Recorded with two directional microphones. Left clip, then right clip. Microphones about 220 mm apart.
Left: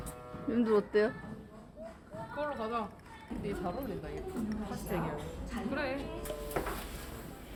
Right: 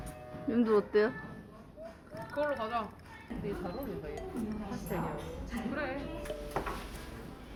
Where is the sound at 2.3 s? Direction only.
45° right (ahead or behind).